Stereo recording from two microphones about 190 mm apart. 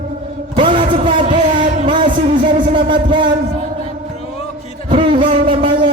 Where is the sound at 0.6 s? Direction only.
25° right (ahead or behind).